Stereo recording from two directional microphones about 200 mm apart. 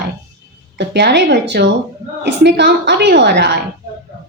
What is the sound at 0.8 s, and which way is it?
A woman's voice, 55° right (ahead or behind).